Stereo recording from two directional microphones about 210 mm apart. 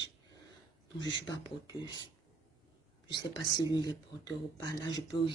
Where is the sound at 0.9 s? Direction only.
20° left (ahead or behind).